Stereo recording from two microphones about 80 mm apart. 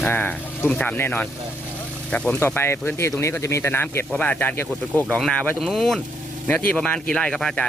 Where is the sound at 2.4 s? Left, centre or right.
Left.